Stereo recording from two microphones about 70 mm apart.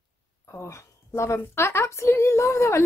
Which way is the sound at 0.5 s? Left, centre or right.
Left.